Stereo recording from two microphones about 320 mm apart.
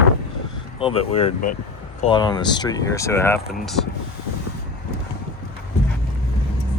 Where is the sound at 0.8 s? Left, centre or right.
Centre.